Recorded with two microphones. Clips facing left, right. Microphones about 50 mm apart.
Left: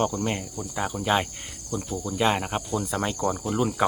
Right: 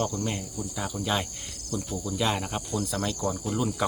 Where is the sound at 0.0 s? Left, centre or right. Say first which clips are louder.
Left 4 dB; left.